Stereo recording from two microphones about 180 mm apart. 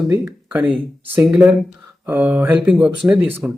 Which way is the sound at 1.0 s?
10° right (ahead or behind).